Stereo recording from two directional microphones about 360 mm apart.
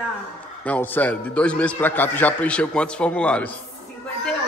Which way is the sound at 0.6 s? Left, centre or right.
Centre.